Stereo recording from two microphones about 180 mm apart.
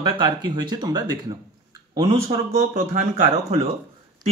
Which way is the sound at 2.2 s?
40° right (ahead or behind).